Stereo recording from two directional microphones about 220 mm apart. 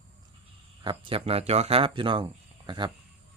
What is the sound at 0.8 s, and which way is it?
Speech, 25° right (ahead or behind).